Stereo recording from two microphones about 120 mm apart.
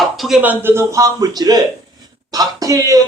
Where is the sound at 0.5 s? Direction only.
20° right (ahead or behind).